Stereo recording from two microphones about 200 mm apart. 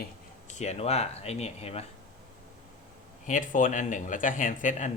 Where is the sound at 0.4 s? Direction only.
35° left (ahead or behind).